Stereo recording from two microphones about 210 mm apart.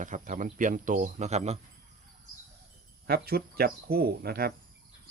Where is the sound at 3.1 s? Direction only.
45° right (ahead or behind).